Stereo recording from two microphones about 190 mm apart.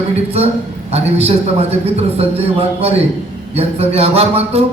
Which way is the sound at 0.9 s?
35° right (ahead or behind).